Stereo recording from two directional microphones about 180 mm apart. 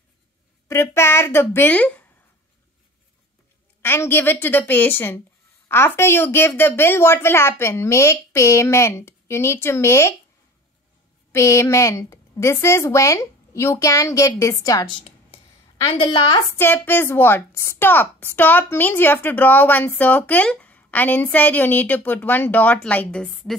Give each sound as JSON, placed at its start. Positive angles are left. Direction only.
{"t": 0.7, "sound": "a woman's voice", "side_deg": 15}
{"t": 3.8, "sound": "a woman's voice", "side_deg": 10}
{"t": 11.3, "sound": "a woman's voice", "side_deg": 15}
{"t": 16.5, "sound": "a woman's voice", "side_deg": 10}